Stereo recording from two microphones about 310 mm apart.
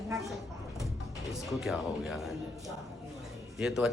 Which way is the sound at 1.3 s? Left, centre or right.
Centre.